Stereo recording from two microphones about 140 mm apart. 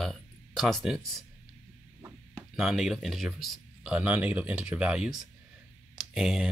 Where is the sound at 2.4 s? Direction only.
5° right (ahead or behind).